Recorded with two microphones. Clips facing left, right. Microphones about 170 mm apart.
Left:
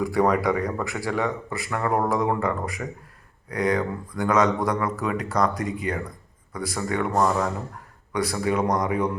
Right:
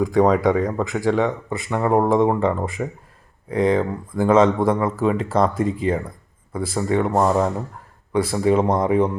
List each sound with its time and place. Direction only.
0.0 s speech: 20° right (ahead or behind)